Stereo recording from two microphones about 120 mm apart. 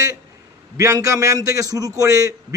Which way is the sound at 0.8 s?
25° right (ahead or behind).